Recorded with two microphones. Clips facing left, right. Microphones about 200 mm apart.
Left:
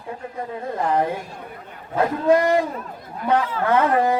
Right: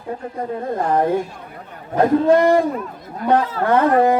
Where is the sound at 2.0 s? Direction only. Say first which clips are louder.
Right 4 dB; 40° right (ahead or behind).